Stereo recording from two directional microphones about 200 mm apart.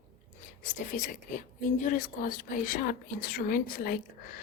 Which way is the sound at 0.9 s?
40° left (ahead or behind).